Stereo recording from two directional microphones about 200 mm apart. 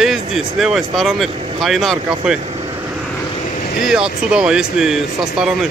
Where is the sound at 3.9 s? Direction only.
5° right (ahead or behind).